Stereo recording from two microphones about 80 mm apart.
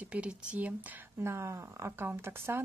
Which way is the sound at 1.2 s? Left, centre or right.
Right.